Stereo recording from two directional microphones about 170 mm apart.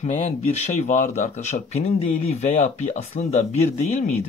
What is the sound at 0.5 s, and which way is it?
Speech, 45° left (ahead or behind).